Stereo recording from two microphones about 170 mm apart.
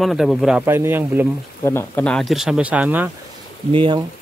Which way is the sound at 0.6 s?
15° right (ahead or behind).